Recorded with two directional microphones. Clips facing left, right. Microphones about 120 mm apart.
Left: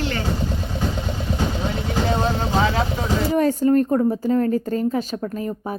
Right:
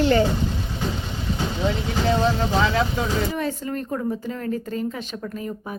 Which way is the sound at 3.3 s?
40° left (ahead or behind).